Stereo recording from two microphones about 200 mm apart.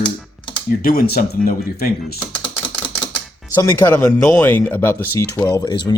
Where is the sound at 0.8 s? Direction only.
45° left (ahead or behind).